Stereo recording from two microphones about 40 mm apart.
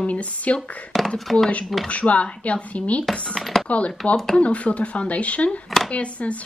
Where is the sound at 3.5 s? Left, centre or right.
Centre.